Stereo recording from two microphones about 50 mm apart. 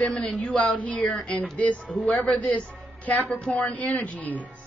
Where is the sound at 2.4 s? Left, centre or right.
Left.